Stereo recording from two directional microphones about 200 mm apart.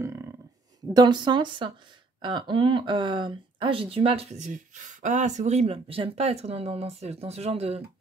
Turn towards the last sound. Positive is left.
turn(degrees=-30)  # may be behind; listen again after turning